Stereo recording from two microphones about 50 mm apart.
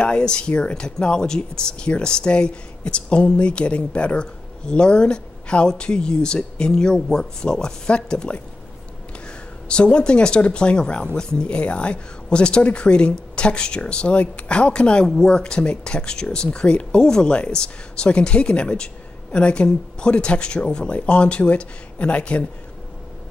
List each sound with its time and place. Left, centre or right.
0.0 s speech: centre
9.7 s speech: centre